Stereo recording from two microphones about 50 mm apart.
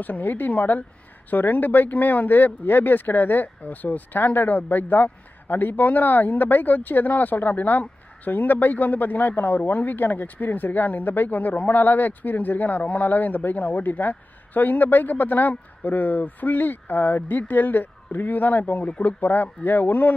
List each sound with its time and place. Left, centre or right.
0.0 s speech: left